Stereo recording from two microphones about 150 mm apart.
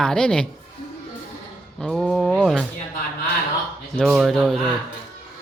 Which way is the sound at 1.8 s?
Centre (ahead or behind).